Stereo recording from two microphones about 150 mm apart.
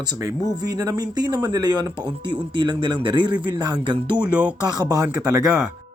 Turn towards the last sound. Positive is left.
turn(degrees=-25)  # may be behind; listen again after turning